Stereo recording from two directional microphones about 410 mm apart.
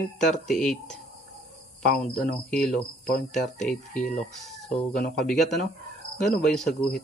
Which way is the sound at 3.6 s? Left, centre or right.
Centre.